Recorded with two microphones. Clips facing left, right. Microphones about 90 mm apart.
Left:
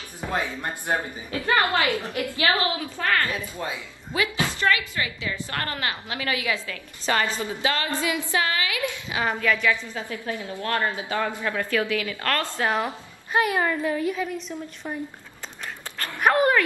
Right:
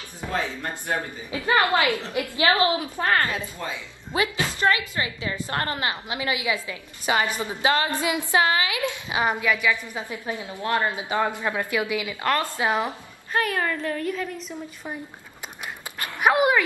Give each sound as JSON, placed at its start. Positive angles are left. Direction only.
{"t": 0.3, "sound": "a woman's voice", "side_deg": 15}
{"t": 1.3, "sound": "a woman's voice", "side_deg": -20}
{"t": 13.3, "sound": "a woman's voice", "side_deg": 15}
{"t": 14.5, "sound": "a woman's voice", "side_deg": -10}
{"t": 15.6, "sound": "dog", "side_deg": -10}